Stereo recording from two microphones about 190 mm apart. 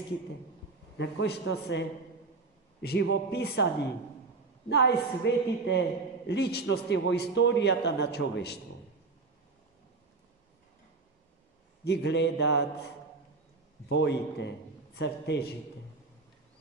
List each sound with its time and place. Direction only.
0.9 s a woman's voice: 65° left (ahead or behind)
4.6 s a woman's voice: 60° left (ahead or behind)
11.8 s a woman's voice: 65° left (ahead or behind)
13.8 s a man's voice: 65° left (ahead or behind)